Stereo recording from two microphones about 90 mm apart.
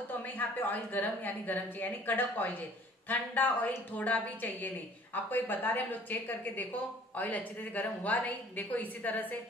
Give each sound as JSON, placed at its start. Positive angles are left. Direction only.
{"t": 0.1, "sound": "a woman's voice", "side_deg": 20}